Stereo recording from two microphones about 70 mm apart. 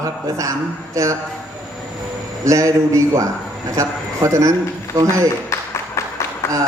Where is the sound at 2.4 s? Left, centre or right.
Right.